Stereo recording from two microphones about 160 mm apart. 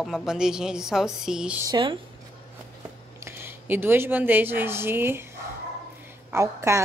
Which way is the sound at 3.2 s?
15° right (ahead or behind).